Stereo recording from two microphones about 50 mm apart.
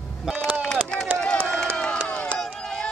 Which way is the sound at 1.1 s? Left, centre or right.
Centre.